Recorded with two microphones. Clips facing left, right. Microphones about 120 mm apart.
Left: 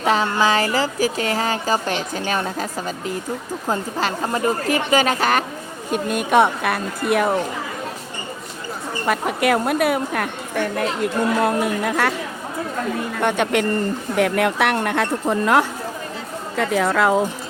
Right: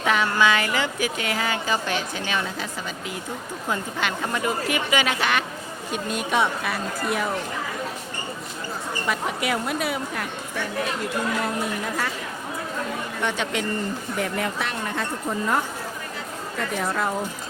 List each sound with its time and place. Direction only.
0.0 s speech: 35° left (ahead or behind)
5.9 s a woman's voice: 55° left (ahead or behind)
9.0 s a woman's voice: 55° left (ahead or behind)
11.4 s speech: 70° left (ahead or behind)
13.2 s a woman's voice: 55° left (ahead or behind)
14.2 s speech: 70° left (ahead or behind)
16.6 s a woman's voice: 90° left